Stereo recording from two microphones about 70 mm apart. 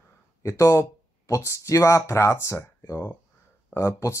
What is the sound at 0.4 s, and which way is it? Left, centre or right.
Speech, left.